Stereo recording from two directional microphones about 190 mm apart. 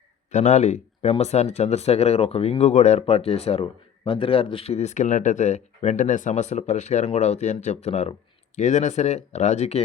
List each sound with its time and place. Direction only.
0.3 s speech: 40° left (ahead or behind)